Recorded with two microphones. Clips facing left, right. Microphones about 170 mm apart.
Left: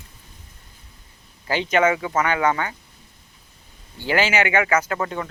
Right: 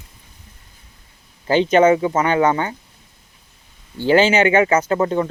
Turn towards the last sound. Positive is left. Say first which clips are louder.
# right 8 dB
turn(degrees=-30)  # may be behind; listen again after turning